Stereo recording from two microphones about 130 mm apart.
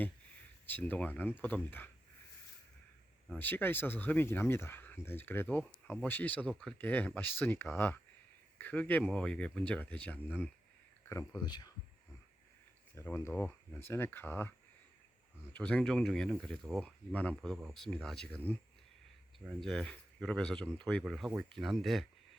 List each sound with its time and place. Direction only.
0.7 s speech: 15° left (ahead or behind)
3.3 s speech: 15° left (ahead or behind)
11.1 s speech: 25° left (ahead or behind)
11.4 s speech: 35° left (ahead or behind)
13.0 s speech: 20° left (ahead or behind)
15.5 s speech: 10° left (ahead or behind)
19.5 s speech: 5° left (ahead or behind)